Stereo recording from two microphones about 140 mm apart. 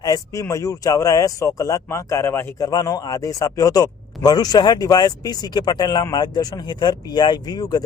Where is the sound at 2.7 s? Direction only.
25° left (ahead or behind).